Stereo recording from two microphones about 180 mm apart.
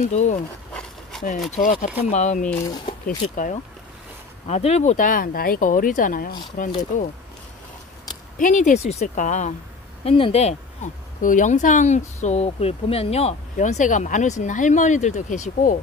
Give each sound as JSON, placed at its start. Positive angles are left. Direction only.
{"t": 0.1, "sound": "speech", "side_deg": 40}
{"t": 1.6, "sound": "speech", "side_deg": 50}
{"t": 8.4, "sound": "speech", "side_deg": 45}
{"t": 10.0, "sound": "speech", "side_deg": 30}